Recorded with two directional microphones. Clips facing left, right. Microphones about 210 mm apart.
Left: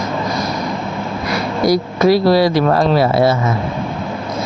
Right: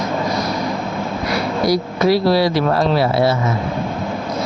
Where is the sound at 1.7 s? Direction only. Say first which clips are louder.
Left 4 dB; 45° left (ahead or behind).